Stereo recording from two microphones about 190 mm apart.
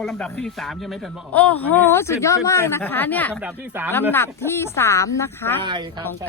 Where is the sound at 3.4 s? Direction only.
10° right (ahead or behind).